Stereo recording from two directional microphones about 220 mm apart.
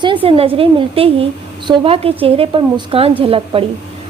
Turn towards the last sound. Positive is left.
turn(degrees=-25)  # may be behind; listen again after turning